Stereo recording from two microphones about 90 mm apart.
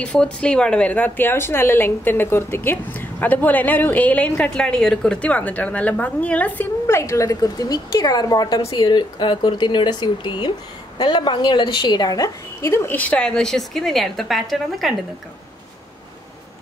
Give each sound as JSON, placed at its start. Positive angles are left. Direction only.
{"t": 0.0, "sound": "a woman's voice", "side_deg": 15}
{"t": 6.9, "sound": "speech", "side_deg": 30}
{"t": 12.6, "sound": "a woman's voice", "side_deg": 25}